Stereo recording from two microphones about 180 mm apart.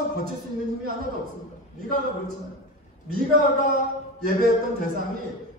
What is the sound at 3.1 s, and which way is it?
Speech, 50° right (ahead or behind).